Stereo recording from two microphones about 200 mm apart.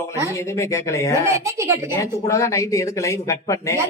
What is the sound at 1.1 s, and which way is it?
Speech, 15° right (ahead or behind).